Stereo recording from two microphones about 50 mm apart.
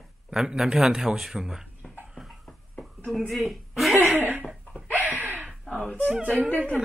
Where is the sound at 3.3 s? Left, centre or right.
Centre.